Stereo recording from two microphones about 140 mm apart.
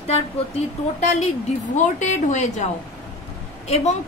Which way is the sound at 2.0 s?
60° left (ahead or behind).